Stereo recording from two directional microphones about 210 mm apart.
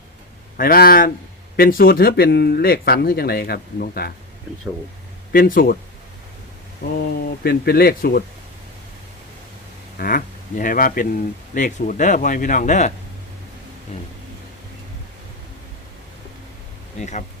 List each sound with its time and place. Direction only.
0.5 s speech: 45° left (ahead or behind)
5.3 s speech: 45° left (ahead or behind)
6.8 s speech: 50° left (ahead or behind)
10.0 s speech: 45° left (ahead or behind)
17.0 s speech: 35° left (ahead or behind)